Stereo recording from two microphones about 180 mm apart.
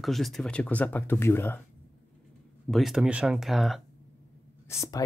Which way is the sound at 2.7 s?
Centre (ahead or behind).